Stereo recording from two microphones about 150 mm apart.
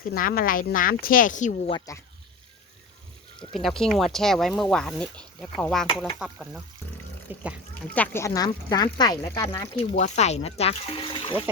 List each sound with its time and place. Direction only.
0.0 s speech: 75° left (ahead or behind); by 1.5 s 55° left (ahead or behind)
1.9 s speech: 20° left (ahead or behind)
3.5 s speech: centre (ahead or behind); by 7.4 s 15° right (ahead or behind)
7.9 s speech: 15° left (ahead or behind)
9.9 s speech: 50° left (ahead or behind); by 11.4 s 35° left (ahead or behind)